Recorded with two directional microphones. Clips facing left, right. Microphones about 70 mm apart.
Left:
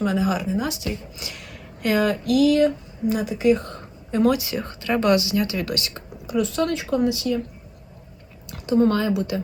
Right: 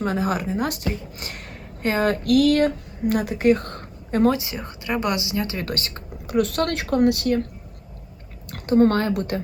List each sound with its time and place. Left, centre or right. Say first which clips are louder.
0.0 s speech: left 1 dB; right
2.1 s speech: right 2 dB; right
4.3 s speech: left 1 dB; right
8.4 s speech: right 2 dB; right